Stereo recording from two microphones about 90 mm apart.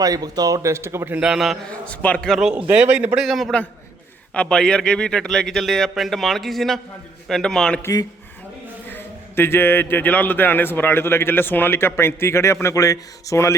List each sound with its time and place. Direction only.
0.0 s a man's voice: 45° right (ahead or behind); by 1.2 s 25° right (ahead or behind)
1.2 s a man's voice: 5° right (ahead or behind)
1.7 s a man's voice: 15° left (ahead or behind)
2.4 s a man's voice: 10° right (ahead or behind)
3.2 s a man's voice: centre (ahead or behind)
8.9 s a man's voice: 25° left (ahead or behind)